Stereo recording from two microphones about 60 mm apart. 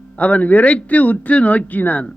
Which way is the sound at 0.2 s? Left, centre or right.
Left.